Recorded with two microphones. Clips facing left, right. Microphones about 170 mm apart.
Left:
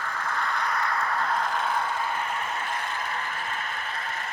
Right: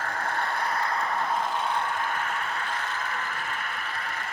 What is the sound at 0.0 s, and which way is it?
Vehicle, 35° right (ahead or behind).